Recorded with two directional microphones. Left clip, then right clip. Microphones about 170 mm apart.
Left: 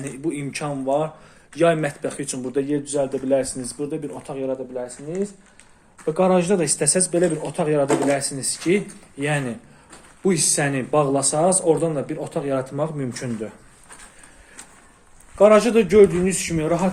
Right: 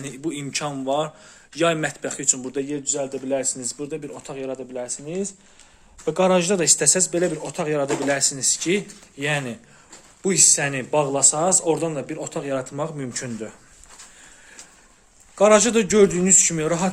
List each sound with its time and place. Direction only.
0.0 s speech: 25° right (ahead or behind)
4.4 s speech: 35° right (ahead or behind); by 7.9 s 15° right (ahead or behind)
8.0 s speech: 30° right (ahead or behind)
15.4 s speech: 20° right (ahead or behind)